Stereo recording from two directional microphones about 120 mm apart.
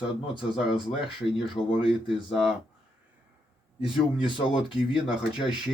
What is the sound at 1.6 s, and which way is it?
Speech, 45° left (ahead or behind).